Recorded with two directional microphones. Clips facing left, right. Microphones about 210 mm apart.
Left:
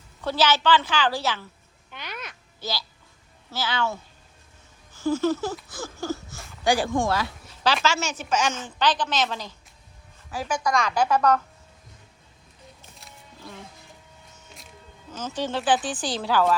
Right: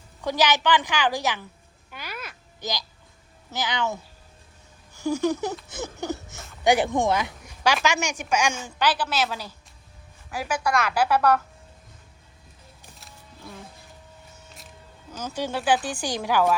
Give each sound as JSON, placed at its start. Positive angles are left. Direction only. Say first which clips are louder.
{"t": 0.2, "sound": "a woman's voice", "louder": "even", "side_deg": -15}
{"t": 1.9, "sound": "a sound", "louder": "even", "side_deg": -5}
{"t": 3.5, "sound": "a woman's voice", "louder": "even", "side_deg": -15}
{"t": 4.9, "sound": "a woman's voice", "louder": "left 1 dB", "side_deg": -15}
{"t": 13.0, "sound": "music", "louder": "even", "side_deg": 0}
{"t": 15.1, "sound": "a woman's voice", "louder": "left 1 dB", "side_deg": -10}